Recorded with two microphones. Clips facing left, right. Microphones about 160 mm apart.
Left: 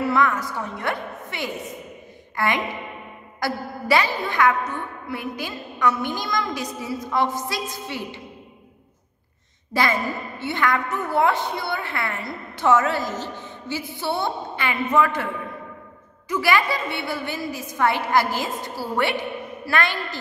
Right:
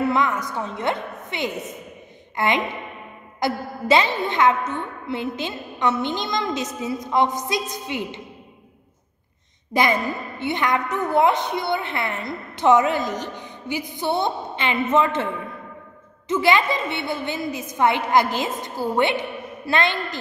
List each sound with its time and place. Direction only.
0.0 s a woman's voice: 20° right (ahead or behind)
9.7 s a woman's voice: 20° right (ahead or behind)
16.3 s a woman's voice: 20° right (ahead or behind)